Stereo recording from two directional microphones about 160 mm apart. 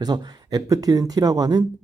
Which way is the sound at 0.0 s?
25° right (ahead or behind).